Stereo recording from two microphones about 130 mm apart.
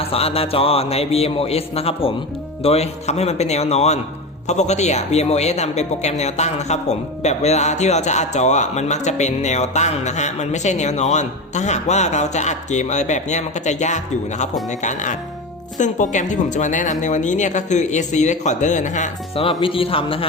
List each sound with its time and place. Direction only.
0.0 s a man's voice: 50° left (ahead or behind); by 19.1 s 65° left (ahead or behind)
19.4 s a man's voice: 45° left (ahead or behind)